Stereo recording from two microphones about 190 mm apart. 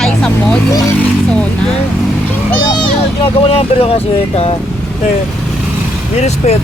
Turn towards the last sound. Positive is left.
turn(degrees=35)  # may be behind; listen again after turning